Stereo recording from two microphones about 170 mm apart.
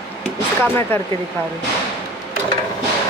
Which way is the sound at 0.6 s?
10° left (ahead or behind).